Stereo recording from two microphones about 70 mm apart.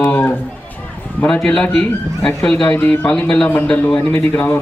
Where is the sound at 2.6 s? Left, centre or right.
Left.